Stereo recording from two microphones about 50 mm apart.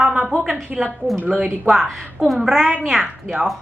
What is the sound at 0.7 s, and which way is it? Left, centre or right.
Speech, centre.